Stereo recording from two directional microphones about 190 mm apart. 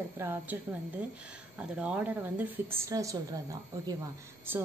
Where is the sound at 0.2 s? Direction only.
10° right (ahead or behind).